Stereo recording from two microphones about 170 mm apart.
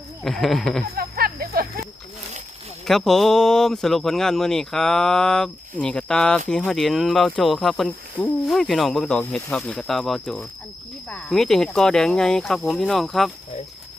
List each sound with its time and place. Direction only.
0.3 s speech: centre (ahead or behind)
0.9 s music: 60° right (ahead or behind)
2.8 s speech: centre (ahead or behind)